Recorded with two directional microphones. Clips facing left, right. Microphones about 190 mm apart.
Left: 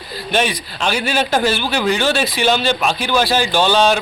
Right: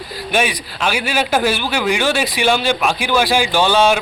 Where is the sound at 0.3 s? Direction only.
10° right (ahead or behind).